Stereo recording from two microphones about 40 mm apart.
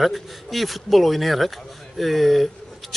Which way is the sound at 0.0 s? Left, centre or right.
Centre.